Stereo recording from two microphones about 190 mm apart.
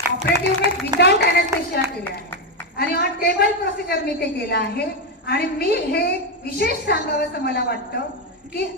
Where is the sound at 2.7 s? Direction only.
55° left (ahead or behind).